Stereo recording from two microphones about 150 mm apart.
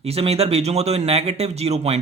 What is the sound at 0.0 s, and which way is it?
A man's voice, 40° right (ahead or behind).